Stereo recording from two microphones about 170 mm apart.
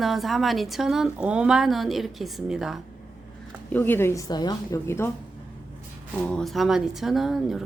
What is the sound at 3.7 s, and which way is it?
A woman's voice, 10° left (ahead or behind).